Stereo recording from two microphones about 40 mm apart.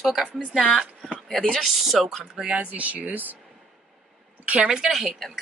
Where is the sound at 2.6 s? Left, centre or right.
Right.